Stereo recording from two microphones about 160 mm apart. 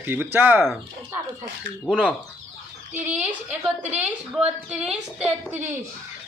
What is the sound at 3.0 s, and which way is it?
A man's voice, 5° right (ahead or behind).